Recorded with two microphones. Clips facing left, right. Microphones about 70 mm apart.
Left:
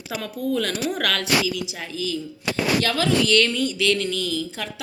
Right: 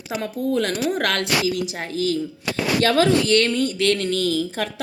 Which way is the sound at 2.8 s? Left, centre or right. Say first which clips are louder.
Right 8 dB; right.